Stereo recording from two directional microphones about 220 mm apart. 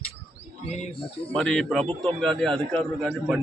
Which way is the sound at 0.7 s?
30° left (ahead or behind).